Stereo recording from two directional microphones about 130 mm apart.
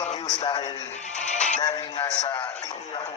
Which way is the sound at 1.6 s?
30° left (ahead or behind).